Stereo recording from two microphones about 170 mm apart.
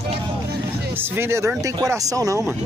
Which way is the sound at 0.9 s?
15° right (ahead or behind).